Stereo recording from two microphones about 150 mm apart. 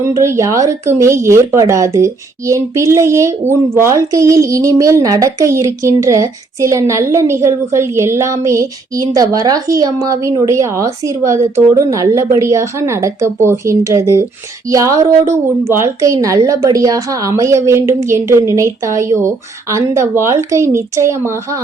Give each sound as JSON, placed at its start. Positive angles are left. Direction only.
{"t": 0.0, "sound": "speech", "side_deg": -20}